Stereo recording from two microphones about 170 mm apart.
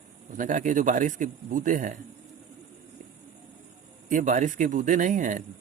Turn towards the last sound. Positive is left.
turn(degrees=-50)  # may be behind; listen again after turning